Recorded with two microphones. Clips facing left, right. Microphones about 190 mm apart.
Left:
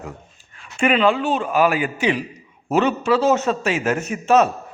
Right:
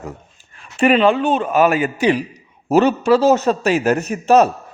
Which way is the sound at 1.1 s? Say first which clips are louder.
Right 3 dB; 40° right (ahead or behind).